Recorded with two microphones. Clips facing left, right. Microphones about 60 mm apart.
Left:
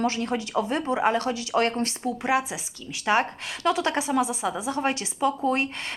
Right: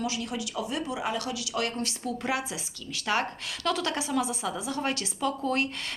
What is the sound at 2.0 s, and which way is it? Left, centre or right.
A woman's voice, left.